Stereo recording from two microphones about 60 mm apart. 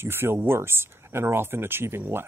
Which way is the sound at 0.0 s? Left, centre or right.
Right.